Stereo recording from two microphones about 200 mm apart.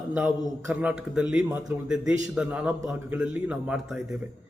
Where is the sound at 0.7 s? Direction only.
5° right (ahead or behind).